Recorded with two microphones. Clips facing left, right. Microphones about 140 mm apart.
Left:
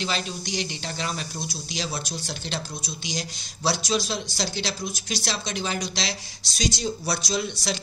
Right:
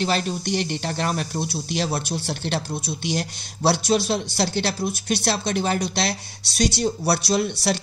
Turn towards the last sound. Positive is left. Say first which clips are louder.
# right 6 dB
turn(degrees=-60)  # may be behind; listen again after turning